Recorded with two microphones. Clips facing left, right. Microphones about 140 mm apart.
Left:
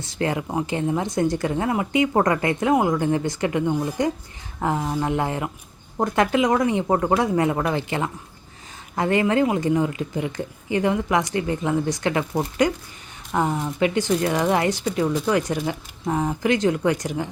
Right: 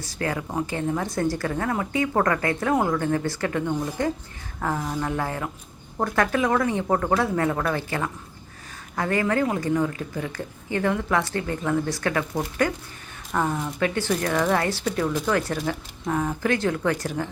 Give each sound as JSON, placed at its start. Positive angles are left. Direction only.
{"t": 0.0, "sound": "speech", "side_deg": 25}